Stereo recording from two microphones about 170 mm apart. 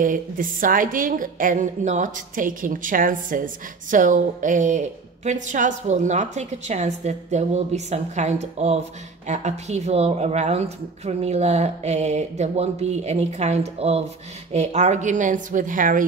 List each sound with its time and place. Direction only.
0.0 s a woman's voice: 55° right (ahead or behind)